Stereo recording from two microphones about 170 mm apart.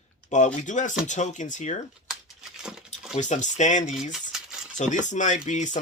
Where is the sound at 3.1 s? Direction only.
45° left (ahead or behind).